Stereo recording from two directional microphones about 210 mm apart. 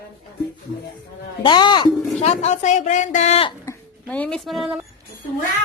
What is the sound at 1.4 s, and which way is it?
Speech, 20° left (ahead or behind).